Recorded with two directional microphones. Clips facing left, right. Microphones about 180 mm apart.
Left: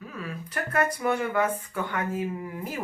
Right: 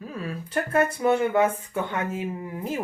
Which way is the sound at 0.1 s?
30° right (ahead or behind).